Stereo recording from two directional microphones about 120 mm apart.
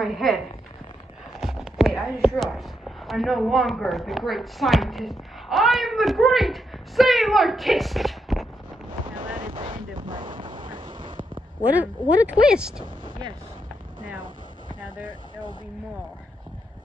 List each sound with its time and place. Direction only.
0.0 s speech: centre (ahead or behind)
1.4 s a sound: 5° right (ahead or behind)
3.1 s speech: centre (ahead or behind)
9.0 s wind noise: 45° right (ahead or behind)
10.4 s a sound: 40° right (ahead or behind)
11.7 s speech: 15° right (ahead or behind)